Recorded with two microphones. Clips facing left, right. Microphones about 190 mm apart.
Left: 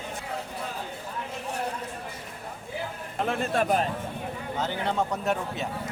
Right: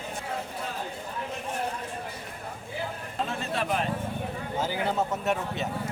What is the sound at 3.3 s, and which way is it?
Speech, 45° left (ahead or behind).